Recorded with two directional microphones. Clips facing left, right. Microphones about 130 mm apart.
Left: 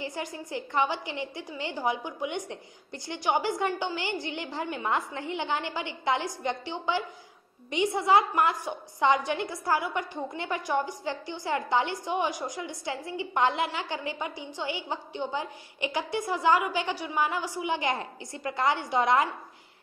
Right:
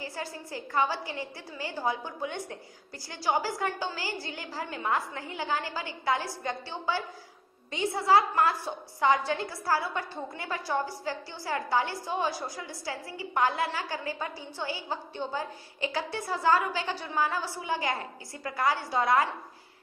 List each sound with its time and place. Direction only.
0.0 s a woman's voice: 20° left (ahead or behind)